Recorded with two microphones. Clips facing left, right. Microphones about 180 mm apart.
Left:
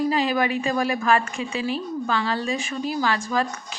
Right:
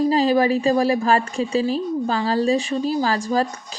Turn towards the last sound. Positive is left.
turn(degrees=-35)  # may be behind; listen again after turning